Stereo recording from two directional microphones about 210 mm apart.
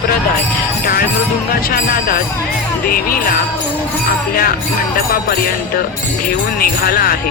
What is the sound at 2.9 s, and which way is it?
Speech, 45° left (ahead or behind).